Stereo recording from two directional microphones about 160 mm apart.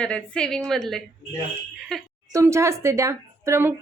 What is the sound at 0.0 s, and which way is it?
A woman's voice, 5° left (ahead or behind).